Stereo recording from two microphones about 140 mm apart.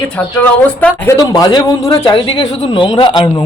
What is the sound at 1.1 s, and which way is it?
A man's voice, 25° left (ahead or behind).